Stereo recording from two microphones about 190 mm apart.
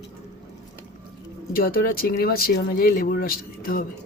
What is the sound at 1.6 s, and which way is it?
Speech, 50° left (ahead or behind).